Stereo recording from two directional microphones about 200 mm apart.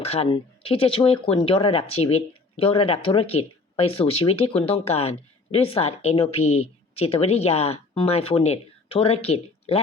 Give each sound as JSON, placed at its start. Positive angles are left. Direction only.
{"t": 0.0, "sound": "speech", "side_deg": 30}